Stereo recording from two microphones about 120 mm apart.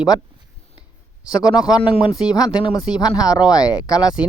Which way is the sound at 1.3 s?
35° left (ahead or behind).